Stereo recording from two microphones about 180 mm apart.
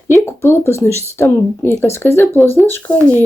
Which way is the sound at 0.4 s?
15° left (ahead or behind).